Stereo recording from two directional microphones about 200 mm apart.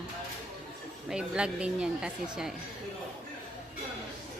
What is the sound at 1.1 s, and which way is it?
A woman's voice, 5° right (ahead or behind).